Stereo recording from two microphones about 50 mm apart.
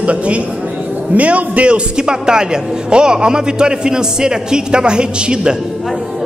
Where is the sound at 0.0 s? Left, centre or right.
Right.